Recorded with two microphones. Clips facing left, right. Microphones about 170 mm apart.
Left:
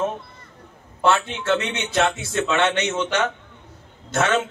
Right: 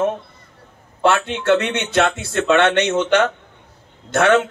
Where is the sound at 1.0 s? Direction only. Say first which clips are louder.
Right 4 dB; 65° right (ahead or behind).